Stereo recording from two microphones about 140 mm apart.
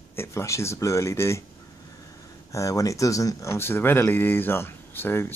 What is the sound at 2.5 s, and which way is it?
Speech, 25° left (ahead or behind).